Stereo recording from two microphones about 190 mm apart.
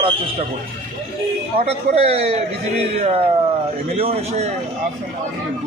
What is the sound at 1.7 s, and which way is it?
A man's voice, 35° right (ahead or behind).